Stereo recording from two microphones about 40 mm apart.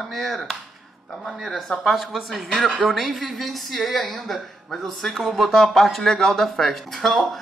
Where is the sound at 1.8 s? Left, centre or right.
Centre.